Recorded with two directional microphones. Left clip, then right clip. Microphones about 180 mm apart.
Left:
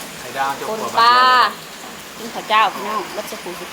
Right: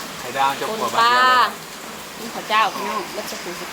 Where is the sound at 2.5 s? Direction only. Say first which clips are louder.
Left 3 dB; 15° left (ahead or behind).